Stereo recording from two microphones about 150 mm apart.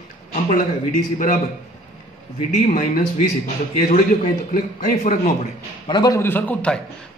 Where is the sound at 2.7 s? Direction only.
80° left.